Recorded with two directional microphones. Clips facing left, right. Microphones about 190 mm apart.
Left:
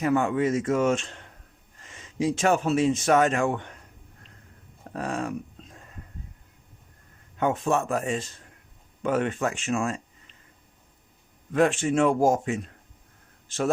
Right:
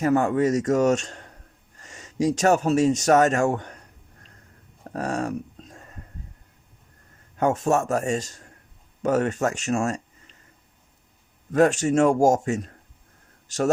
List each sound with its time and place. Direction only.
0.0 s a man's voice: 40° right (ahead or behind)
4.9 s a man's voice: 45° right (ahead or behind)
5.6 s a sound: 40° right (ahead or behind)
7.3 s a man's voice: 45° right (ahead or behind)
11.5 s a man's voice: 40° right (ahead or behind)